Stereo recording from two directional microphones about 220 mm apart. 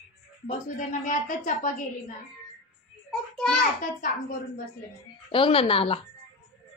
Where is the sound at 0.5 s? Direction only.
35° left (ahead or behind).